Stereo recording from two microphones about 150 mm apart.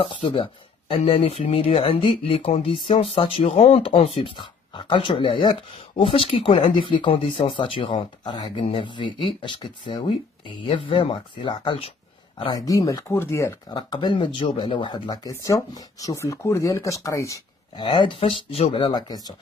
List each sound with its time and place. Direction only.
0.0 s speech: 40° left (ahead or behind); by 17.8 s 20° left (ahead or behind)
17.8 s speech: 35° left (ahead or behind)